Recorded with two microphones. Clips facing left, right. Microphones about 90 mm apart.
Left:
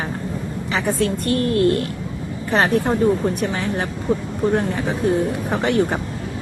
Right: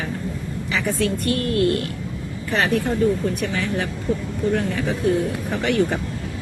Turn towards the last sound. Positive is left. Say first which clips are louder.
# left 2 dB
turn(degrees=35)  # may be behind; listen again after turning